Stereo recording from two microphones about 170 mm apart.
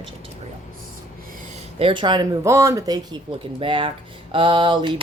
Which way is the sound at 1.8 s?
30° right (ahead or behind).